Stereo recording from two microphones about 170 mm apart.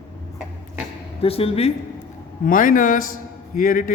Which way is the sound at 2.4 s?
50° left (ahead or behind).